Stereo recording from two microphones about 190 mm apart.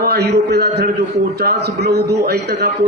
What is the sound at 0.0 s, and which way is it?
A man's voice, 55° right (ahead or behind).